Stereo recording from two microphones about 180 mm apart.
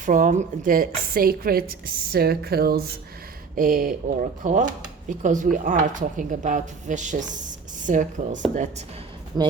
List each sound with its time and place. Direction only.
0.0 s a woman's voice: 45° right (ahead or behind)
9.3 s speech: 25° right (ahead or behind)